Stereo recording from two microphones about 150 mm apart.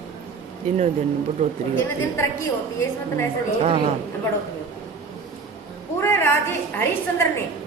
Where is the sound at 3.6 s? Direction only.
45° right (ahead or behind).